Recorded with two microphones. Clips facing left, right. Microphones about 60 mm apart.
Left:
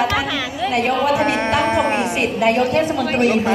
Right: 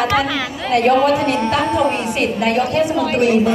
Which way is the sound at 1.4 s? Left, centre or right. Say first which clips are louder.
Right 1 dB; left.